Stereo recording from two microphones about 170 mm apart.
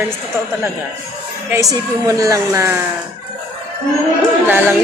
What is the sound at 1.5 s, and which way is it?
A woman's voice, 20° right (ahead or behind).